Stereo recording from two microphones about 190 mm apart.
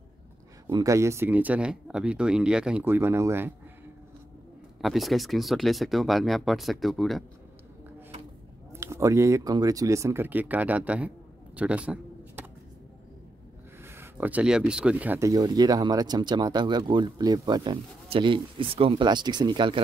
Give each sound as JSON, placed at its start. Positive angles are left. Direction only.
{"t": 0.7, "sound": "speech", "side_deg": -20}
{"t": 4.8, "sound": "speech", "side_deg": 0}
{"t": 8.7, "sound": "speech", "side_deg": -15}
{"t": 13.8, "sound": "speech", "side_deg": -10}